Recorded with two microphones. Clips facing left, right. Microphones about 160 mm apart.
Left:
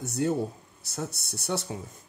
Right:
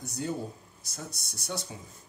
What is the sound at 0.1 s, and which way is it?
Speech, 70° left (ahead or behind).